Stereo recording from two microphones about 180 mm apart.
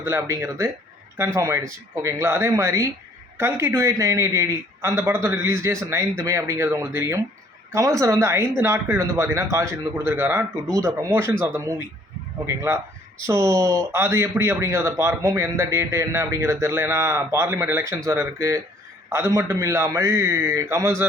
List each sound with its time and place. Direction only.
0.0 s a man's voice: 15° right (ahead or behind)
12.5 s a man's voice: 15° right (ahead or behind)